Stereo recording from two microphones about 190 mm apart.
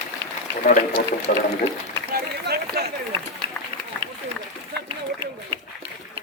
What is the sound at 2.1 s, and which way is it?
Run, 55° right (ahead or behind).